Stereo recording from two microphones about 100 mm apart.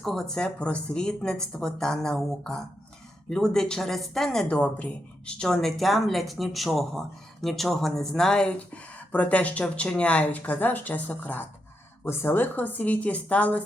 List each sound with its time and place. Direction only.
0.0 s speech: centre (ahead or behind)